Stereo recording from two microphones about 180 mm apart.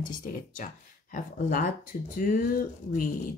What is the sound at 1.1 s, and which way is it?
Speech, 50° left (ahead or behind).